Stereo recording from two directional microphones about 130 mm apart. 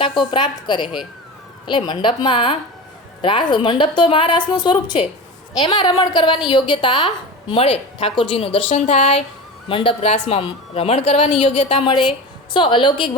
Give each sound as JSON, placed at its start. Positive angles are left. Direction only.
{"t": 0.0, "sound": "a woman's voice", "side_deg": 40}
{"t": 9.6, "sound": "a woman's voice", "side_deg": 45}
{"t": 11.8, "sound": "a woman's voice", "side_deg": 40}